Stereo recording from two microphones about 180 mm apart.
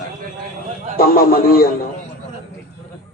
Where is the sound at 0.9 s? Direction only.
55° left (ahead or behind).